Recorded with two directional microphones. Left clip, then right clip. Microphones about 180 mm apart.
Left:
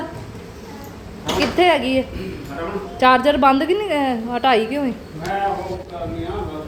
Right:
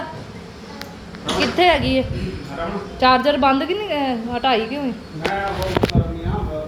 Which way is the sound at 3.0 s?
20° left (ahead or behind).